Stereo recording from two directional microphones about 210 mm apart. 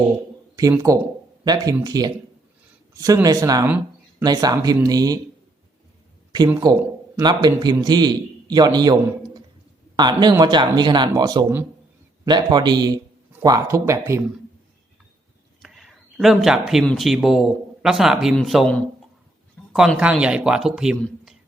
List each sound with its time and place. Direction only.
0.5 s speech: 15° right (ahead or behind)
6.5 s a man's voice: 15° right (ahead or behind)
15.6 s a man's voice: centre (ahead or behind)